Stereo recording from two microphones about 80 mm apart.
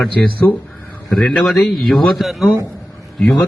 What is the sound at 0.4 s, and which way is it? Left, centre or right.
Speech, left.